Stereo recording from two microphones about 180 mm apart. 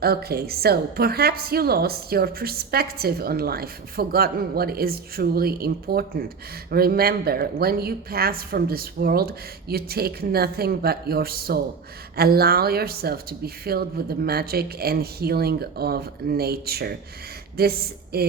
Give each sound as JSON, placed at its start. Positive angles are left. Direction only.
{"t": 0.0, "sound": "a woman's voice", "side_deg": -60}